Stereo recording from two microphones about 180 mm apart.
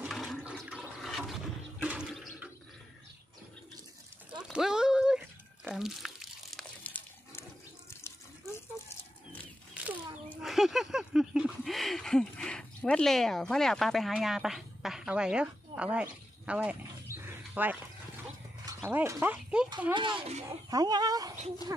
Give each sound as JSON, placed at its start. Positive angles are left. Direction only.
{"t": 0.0, "sound": "toilet flush", "side_deg": 0}
{"t": 4.3, "sound": "a sound", "side_deg": -5}
{"t": 10.3, "sound": "a sound", "side_deg": 0}
{"t": 18.9, "sound": "speech", "side_deg": -10}
{"t": 19.9, "sound": "speech", "side_deg": -25}
{"t": 20.7, "sound": "speech", "side_deg": -20}